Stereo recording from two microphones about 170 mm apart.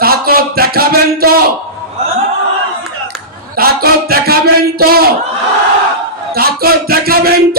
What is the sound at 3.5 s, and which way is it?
Music, 65° right (ahead or behind).